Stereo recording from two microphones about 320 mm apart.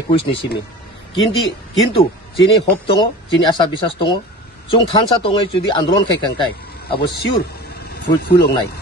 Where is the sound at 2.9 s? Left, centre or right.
Centre.